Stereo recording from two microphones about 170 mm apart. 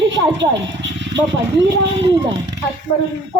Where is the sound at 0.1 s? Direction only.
90° right.